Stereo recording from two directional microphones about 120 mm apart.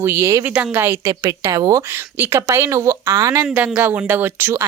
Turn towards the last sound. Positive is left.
turn(degrees=-20)  # may be behind; listen again after turning